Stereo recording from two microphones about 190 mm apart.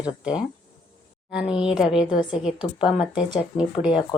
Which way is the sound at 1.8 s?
5° right (ahead or behind).